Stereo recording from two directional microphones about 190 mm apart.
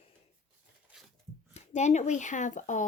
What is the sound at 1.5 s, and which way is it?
Speech, 35° left (ahead or behind).